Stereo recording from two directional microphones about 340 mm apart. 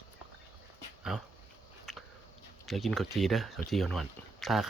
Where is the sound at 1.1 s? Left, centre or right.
Centre.